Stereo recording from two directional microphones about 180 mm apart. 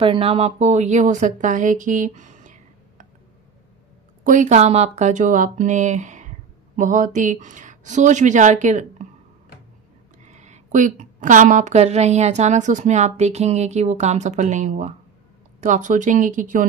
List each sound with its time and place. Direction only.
0.0 s speech: 30° right (ahead or behind)
4.2 s speech: 45° right (ahead or behind)
10.2 s a woman's voice: 40° right (ahead or behind)